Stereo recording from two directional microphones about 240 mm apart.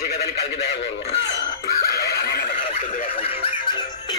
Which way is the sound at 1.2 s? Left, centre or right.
Left.